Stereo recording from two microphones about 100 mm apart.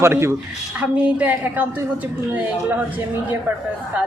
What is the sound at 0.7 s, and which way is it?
Speech, 15° right (ahead or behind).